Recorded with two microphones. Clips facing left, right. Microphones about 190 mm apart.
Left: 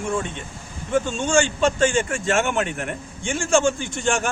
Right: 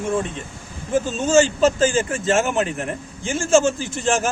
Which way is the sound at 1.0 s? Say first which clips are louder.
Right 8 dB; 5° right (ahead or behind).